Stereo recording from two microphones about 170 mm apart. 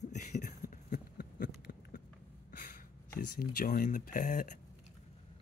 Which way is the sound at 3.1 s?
60° left (ahead or behind).